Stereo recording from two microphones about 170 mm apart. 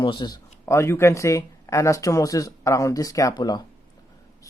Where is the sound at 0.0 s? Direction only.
25° left (ahead or behind).